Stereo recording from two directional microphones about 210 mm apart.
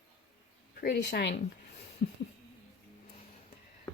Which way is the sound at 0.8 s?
50° left (ahead or behind).